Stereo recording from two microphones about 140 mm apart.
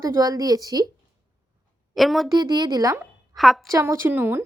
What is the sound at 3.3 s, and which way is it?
Speech, centre (ahead or behind).